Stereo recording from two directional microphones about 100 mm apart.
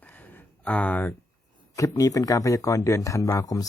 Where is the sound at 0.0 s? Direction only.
15° left (ahead or behind).